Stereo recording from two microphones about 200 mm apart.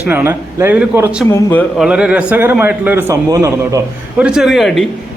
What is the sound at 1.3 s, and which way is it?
Speech, 10° left (ahead or behind).